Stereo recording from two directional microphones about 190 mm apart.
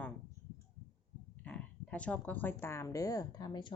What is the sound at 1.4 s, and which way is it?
Speech, 5° left (ahead or behind).